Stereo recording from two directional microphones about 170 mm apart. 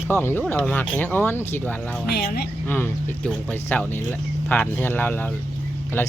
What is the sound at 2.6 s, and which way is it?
Speech, 10° left (ahead or behind).